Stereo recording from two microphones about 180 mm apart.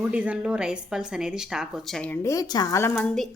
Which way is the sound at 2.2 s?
20° left (ahead or behind).